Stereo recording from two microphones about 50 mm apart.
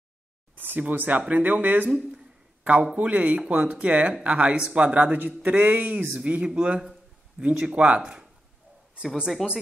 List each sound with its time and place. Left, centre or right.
0.7 s speech: right
1.9 s speech: centre
2.6 s a man's voice: right
3.8 s speech: right
6.8 s speech: centre
9.4 s speech: centre